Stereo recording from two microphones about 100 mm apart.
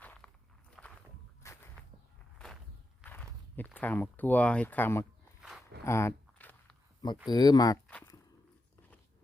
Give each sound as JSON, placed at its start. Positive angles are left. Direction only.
{"t": 0.0, "sound": "walk", "side_deg": 15}
{"t": 0.8, "sound": "walk", "side_deg": 0}
{"t": 1.4, "sound": "walk", "side_deg": 30}
{"t": 2.4, "sound": "walk", "side_deg": 10}
{"t": 3.0, "sound": "walk", "side_deg": 20}
{"t": 3.8, "sound": "speech", "side_deg": 15}
{"t": 5.8, "sound": "a sound", "side_deg": 25}
{"t": 7.3, "sound": "speech", "side_deg": 45}